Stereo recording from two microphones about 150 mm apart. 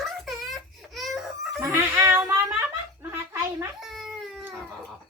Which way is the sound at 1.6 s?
15° right (ahead or behind).